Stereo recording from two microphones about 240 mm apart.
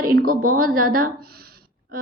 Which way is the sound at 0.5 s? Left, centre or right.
Right.